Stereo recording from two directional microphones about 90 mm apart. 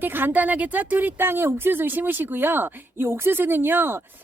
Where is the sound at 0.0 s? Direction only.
25° right (ahead or behind).